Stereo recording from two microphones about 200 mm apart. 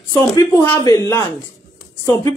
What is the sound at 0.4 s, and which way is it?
A woman's voice, 15° left (ahead or behind).